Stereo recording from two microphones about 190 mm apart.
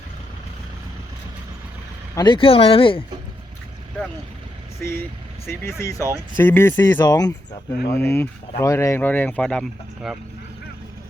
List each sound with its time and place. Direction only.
2.1 s speech: 25° left (ahead or behind)
4.8 s speech: 10° left (ahead or behind)